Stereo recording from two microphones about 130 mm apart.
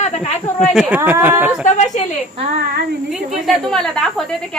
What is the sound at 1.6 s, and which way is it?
Speech, 65° left (ahead or behind).